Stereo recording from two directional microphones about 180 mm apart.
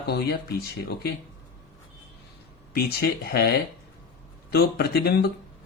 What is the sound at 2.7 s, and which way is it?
Speech, 60° left (ahead or behind).